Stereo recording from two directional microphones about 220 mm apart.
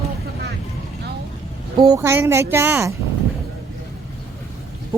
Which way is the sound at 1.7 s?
15° right (ahead or behind).